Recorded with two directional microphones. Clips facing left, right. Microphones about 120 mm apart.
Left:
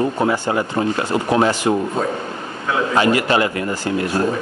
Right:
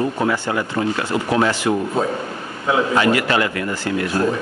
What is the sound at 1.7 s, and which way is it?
Speech, 25° left (ahead or behind).